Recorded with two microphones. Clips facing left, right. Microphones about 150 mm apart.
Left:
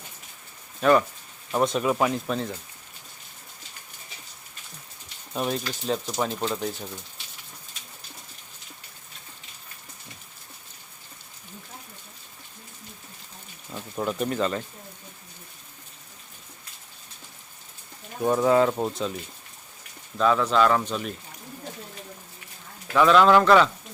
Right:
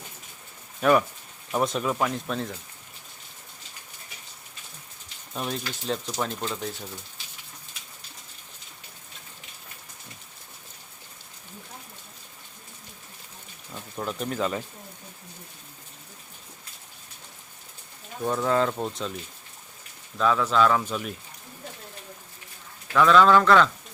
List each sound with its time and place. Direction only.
0.8 s speech: 5° right (ahead or behind)
5.3 s speech: 5° left (ahead or behind)
13.9 s speech: 5° left (ahead or behind)
18.2 s speech: 15° left (ahead or behind)
20.1 s speech: centre (ahead or behind)
23.0 s speech: 10° left (ahead or behind)